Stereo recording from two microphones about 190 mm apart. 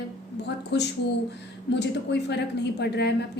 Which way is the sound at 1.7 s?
65° left (ahead or behind).